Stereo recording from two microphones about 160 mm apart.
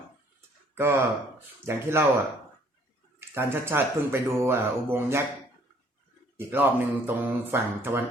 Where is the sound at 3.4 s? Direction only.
15° right (ahead or behind).